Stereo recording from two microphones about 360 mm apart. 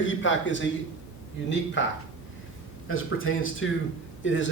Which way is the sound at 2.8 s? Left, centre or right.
Left.